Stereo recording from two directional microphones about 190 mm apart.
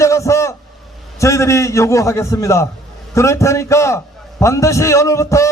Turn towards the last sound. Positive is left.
turn(degrees=15)  # may be behind; listen again after turning